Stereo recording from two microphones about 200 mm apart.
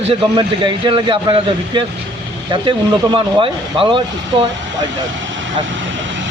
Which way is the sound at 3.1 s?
25° right (ahead or behind).